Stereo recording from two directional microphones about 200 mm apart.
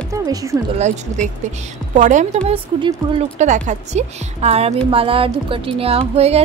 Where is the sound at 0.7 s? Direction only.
35° right (ahead or behind).